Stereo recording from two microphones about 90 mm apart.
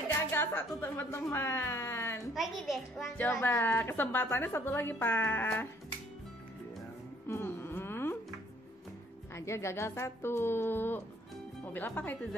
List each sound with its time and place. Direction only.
0.3 s a woman's voice: 25° left (ahead or behind)
2.3 s a child's voice: 5° right (ahead or behind)
3.4 s a woman's voice: 25° left (ahead or behind)
7.2 s a sound: 25° left (ahead or behind)
9.3 s a woman's voice: 30° left (ahead or behind)